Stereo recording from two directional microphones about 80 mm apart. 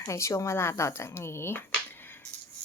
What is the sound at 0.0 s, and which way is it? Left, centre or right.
A woman's voice, left.